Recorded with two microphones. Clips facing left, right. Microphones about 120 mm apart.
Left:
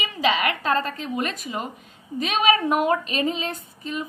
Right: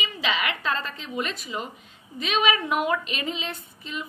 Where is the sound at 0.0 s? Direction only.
45° left (ahead or behind).